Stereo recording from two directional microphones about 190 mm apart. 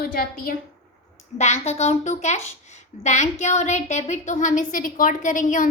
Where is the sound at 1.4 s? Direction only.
35° left (ahead or behind).